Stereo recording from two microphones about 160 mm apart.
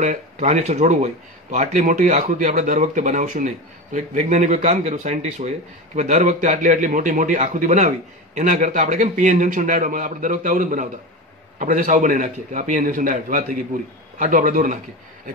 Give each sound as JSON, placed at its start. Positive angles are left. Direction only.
{"t": 0.0, "sound": "a man's voice", "side_deg": -45}